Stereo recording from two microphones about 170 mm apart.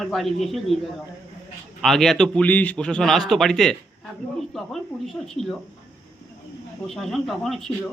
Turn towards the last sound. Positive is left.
turn(degrees=0)  # may be behind; listen again after turning